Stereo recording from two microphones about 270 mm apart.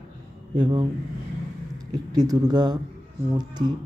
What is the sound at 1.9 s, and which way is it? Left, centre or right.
Speech, centre.